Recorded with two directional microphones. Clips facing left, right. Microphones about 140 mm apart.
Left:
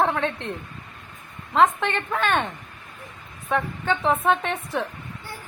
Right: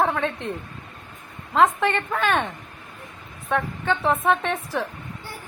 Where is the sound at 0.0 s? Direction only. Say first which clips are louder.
Even; centre (ahead or behind).